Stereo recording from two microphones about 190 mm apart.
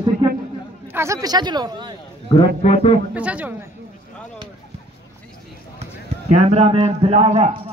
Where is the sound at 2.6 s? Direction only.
30° left (ahead or behind).